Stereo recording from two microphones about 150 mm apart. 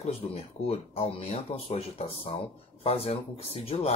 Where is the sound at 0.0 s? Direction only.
40° left (ahead or behind).